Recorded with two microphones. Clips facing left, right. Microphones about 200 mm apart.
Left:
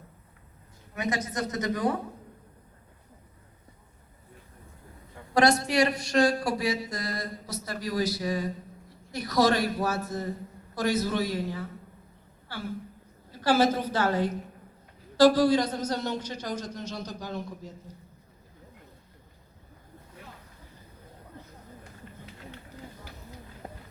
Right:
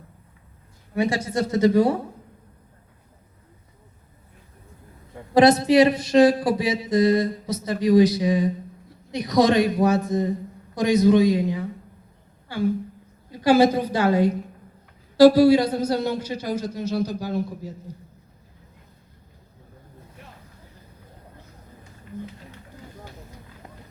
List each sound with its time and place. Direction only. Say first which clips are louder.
0.9 s speech: right 7 dB; 30° right (ahead or behind)
5.3 s a woman's voice: right 8 dB; 20° right (ahead or behind); by 17.7 s 5° right (ahead or behind)
23.6 s run: left 5 dB; 30° left (ahead or behind)